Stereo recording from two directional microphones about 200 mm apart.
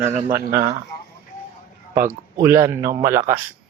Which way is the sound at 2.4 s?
15° right (ahead or behind).